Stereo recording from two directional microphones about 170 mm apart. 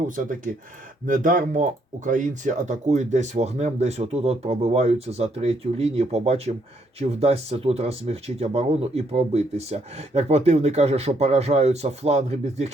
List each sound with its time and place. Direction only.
1.0 s speech: 50° right (ahead or behind)